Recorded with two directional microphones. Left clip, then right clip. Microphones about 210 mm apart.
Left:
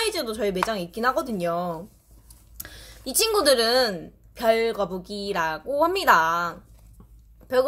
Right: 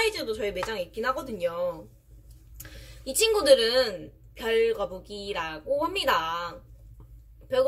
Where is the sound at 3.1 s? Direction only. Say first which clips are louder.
Even; 50° left (ahead or behind).